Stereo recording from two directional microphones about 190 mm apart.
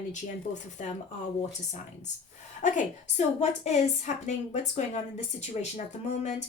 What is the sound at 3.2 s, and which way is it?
A woman's voice, 35° left (ahead or behind).